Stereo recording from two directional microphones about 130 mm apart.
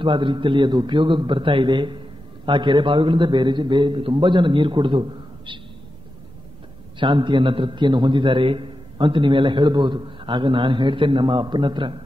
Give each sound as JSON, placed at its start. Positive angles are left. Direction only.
{"t": 0.0, "sound": "a man's voice", "side_deg": -40}
{"t": 7.0, "sound": "a man's voice", "side_deg": -40}